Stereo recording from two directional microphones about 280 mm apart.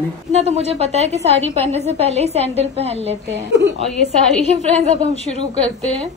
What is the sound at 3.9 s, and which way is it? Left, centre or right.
Speech, centre.